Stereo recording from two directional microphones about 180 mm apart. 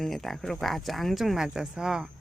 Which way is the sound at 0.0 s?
Centre (ahead or behind).